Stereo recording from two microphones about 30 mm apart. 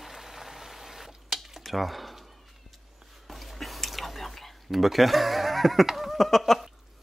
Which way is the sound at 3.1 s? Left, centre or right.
Centre.